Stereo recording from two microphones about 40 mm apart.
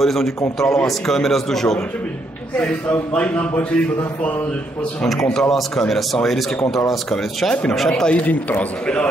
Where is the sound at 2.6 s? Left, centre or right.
Left.